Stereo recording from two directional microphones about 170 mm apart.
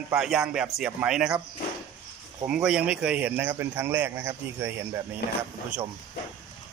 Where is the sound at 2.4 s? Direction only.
5° right (ahead or behind).